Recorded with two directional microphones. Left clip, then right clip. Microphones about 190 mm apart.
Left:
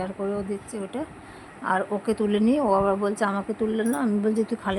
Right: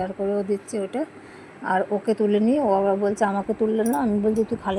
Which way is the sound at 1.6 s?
Centre (ahead or behind).